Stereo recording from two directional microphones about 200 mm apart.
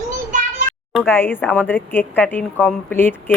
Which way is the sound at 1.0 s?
10° left (ahead or behind).